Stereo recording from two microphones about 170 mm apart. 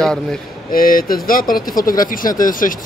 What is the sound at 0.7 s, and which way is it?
Speech, 55° left (ahead or behind).